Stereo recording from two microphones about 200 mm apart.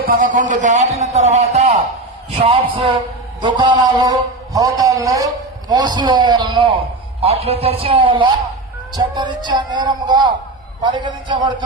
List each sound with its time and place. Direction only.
0.1 s a man's voice: 40° right (ahead or behind); by 11.5 s 25° right (ahead or behind)